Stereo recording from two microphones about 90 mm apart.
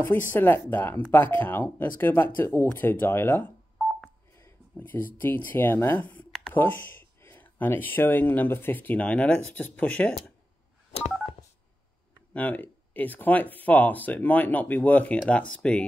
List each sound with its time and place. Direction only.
0.0 s speech: 25° left (ahead or behind)
3.7 s telephone dialing: 10° left (ahead or behind)
4.7 s speech: 20° left (ahead or behind)
12.4 s speech: 15° left (ahead or behind)